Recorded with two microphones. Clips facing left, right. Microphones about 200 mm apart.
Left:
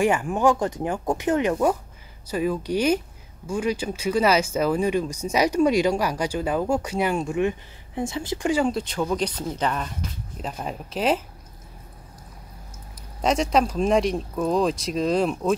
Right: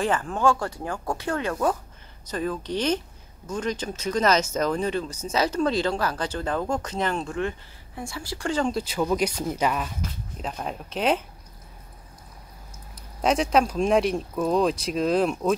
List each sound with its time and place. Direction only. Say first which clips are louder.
0.0 s speech: left 3 dB; 15° left (ahead or behind)
8.7 s speech: right 1 dB; 5° right (ahead or behind)
13.2 s speech: even; centre (ahead or behind)